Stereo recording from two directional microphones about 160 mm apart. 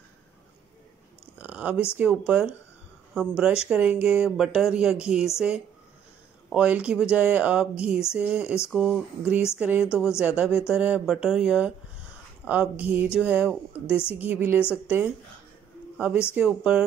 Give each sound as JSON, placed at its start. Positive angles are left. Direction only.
{"t": 1.4, "sound": "speech", "side_deg": -10}
{"t": 6.5, "sound": "speech", "side_deg": -5}
{"t": 9.8, "sound": "a woman's voice", "side_deg": 15}
{"t": 10.1, "sound": "speech", "side_deg": -5}
{"t": 16.3, "sound": "speech", "side_deg": -5}